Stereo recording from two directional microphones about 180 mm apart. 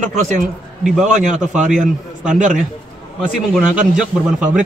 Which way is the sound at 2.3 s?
45° right (ahead or behind).